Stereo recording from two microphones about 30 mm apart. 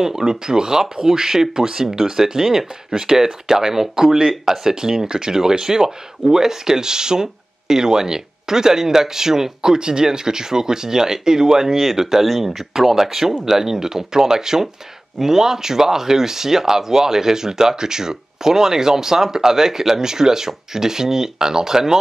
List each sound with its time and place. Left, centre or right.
0.0 s speech: centre